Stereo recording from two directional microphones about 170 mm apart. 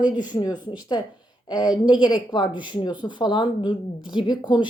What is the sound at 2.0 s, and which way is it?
A woman's voice, 25° left (ahead or behind).